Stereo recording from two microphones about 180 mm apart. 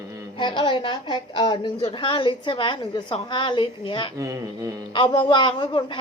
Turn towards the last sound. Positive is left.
turn(degrees=25)  # may be behind; listen again after turning